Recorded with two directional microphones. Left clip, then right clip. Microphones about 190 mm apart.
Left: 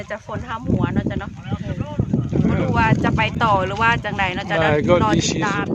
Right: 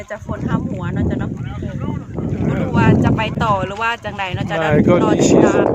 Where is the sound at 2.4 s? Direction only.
Centre (ahead or behind).